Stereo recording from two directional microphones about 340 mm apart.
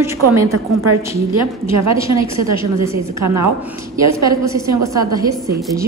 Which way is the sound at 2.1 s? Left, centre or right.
Right.